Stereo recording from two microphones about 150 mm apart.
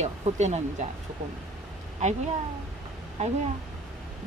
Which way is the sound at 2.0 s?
50° right (ahead or behind).